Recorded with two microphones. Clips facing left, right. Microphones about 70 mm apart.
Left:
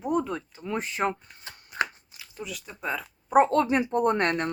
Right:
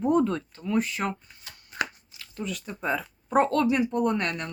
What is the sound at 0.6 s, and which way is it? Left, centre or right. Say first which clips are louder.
Speech: even; left.